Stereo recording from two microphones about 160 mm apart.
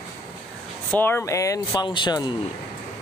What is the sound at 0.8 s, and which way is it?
Speech, 10° left (ahead or behind).